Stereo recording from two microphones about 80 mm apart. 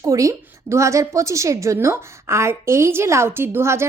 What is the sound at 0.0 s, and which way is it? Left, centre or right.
A woman's voice, right.